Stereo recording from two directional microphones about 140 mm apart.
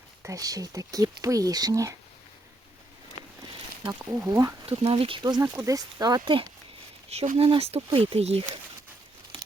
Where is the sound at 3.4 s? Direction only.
35° right (ahead or behind).